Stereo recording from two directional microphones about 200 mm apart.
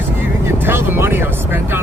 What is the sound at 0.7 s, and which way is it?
Vehicle, 10° right (ahead or behind).